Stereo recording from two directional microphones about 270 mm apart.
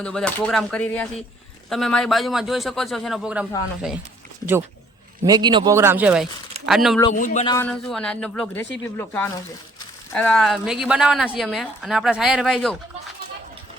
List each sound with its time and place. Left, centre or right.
0.0 s speech: centre
5.2 s a man's voice: centre
7.1 s speech: left
7.5 s speech: centre